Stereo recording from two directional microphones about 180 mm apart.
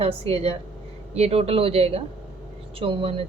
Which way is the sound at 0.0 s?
30° right (ahead or behind).